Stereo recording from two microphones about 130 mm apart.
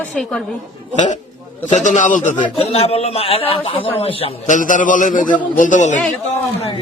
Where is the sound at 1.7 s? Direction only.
70° left (ahead or behind).